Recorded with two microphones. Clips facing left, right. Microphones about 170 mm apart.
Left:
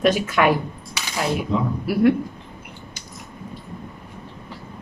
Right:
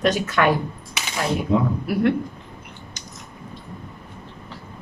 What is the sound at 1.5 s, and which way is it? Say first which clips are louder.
Speech: right 5 dB; 55° right (ahead or behind).